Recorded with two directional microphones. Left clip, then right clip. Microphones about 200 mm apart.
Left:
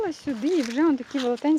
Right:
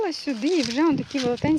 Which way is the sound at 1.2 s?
15° right (ahead or behind).